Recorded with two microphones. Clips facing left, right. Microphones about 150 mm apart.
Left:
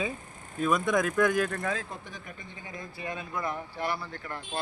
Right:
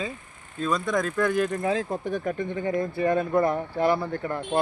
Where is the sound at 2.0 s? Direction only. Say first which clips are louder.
Right 17 dB; 55° right (ahead or behind).